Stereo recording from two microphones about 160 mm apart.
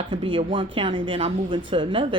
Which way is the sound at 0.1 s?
30° right (ahead or behind).